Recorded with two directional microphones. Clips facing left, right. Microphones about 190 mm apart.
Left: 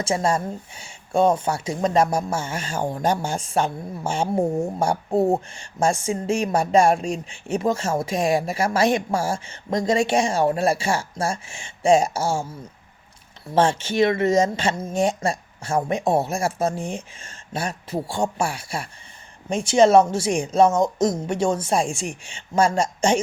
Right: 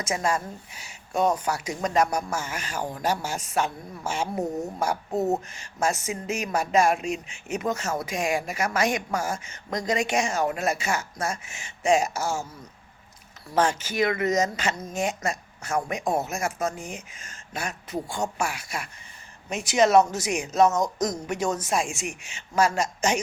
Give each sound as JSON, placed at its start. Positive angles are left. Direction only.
{"t": 0.0, "sound": "speech", "side_deg": 30}